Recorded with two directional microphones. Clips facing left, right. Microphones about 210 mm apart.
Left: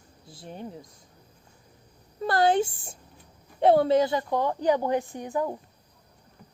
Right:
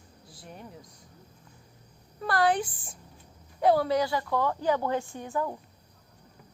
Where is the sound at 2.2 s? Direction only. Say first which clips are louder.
Left 3 dB; 25° left (ahead or behind).